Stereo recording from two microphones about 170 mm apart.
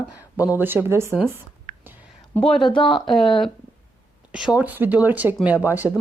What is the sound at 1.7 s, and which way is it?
Whispering, 45° right (ahead or behind).